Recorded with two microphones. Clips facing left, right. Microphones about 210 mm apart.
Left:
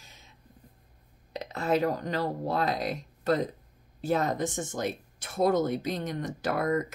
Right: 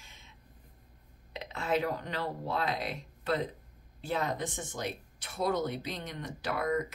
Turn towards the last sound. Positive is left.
turn(degrees=45)  # may be behind; listen again after turning